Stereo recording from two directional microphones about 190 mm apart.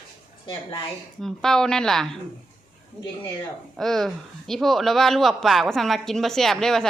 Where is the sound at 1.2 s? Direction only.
Centre (ahead or behind).